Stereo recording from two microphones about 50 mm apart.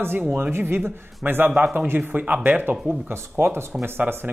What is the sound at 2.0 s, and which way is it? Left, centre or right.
Speech, right.